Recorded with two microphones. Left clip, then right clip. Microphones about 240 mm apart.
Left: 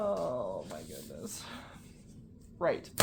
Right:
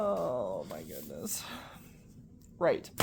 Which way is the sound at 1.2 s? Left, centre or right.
Right.